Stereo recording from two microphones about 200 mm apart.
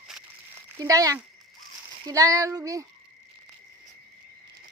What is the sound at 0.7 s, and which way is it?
A child's voice, 15° right (ahead or behind).